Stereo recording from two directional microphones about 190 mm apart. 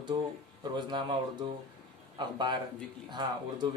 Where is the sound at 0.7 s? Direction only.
25° right (ahead or behind).